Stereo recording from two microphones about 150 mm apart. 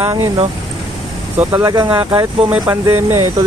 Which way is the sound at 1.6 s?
25° right (ahead or behind).